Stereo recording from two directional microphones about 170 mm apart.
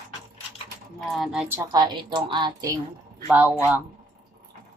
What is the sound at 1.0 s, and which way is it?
Speech, centre (ahead or behind).